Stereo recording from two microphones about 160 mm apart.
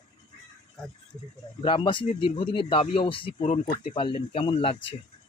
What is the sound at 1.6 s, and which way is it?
Speech, 30° left (ahead or behind).